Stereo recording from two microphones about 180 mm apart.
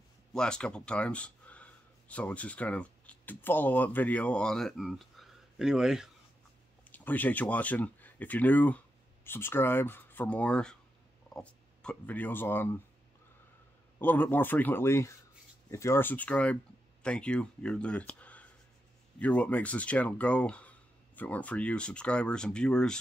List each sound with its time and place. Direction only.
0.3 s speech: 5° left (ahead or behind)
6.9 s speech: 10° left (ahead or behind)
13.9 s speech: 10° left (ahead or behind)